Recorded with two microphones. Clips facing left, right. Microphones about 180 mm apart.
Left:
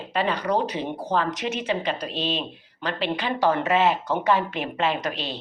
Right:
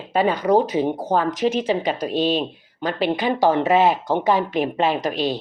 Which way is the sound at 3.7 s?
40° right (ahead or behind).